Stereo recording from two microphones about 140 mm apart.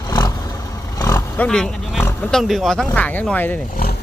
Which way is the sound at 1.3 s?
10° left (ahead or behind).